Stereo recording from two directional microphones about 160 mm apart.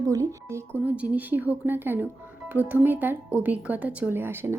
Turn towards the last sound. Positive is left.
turn(degrees=-15)  # may be behind; listen again after turning